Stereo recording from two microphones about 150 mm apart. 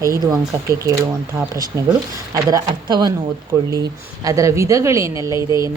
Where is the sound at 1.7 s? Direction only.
25° right (ahead or behind).